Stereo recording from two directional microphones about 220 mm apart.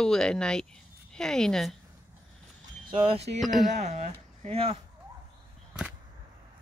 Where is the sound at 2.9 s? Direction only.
25° right (ahead or behind).